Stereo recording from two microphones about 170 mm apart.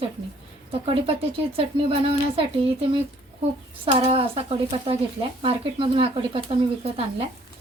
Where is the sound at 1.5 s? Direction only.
35° right (ahead or behind).